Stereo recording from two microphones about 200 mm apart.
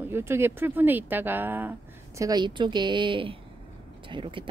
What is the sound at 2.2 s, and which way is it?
Speech, 20° right (ahead or behind).